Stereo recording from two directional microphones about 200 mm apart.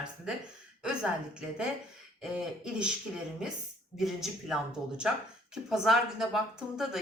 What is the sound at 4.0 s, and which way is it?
Speech, centre (ahead or behind).